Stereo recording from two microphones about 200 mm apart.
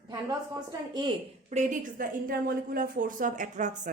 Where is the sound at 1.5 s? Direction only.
35° right (ahead or behind).